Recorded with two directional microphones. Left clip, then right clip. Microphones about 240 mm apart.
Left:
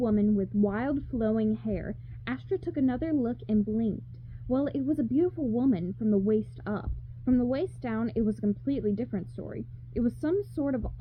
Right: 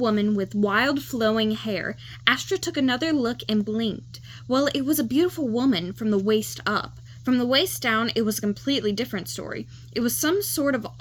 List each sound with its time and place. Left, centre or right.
0.0 s speech: centre
8.3 s speech: right
8.6 s speech: centre